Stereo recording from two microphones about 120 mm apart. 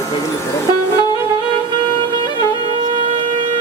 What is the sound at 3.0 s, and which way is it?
Shofar, 45° right (ahead or behind).